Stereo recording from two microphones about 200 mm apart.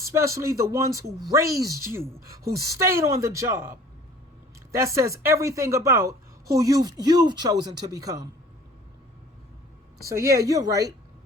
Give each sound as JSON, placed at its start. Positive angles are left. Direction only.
{"t": 0.0, "sound": "a woman's voice", "side_deg": -15}
{"t": 10.1, "sound": "a woman's voice", "side_deg": -15}